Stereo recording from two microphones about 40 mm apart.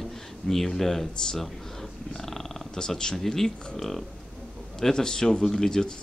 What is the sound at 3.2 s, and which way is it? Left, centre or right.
Speech, centre.